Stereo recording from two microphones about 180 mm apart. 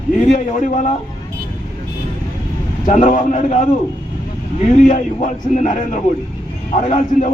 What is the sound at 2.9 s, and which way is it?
Speech, 40° left (ahead or behind).